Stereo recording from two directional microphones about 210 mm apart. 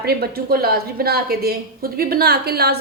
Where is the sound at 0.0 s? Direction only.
45° right (ahead or behind).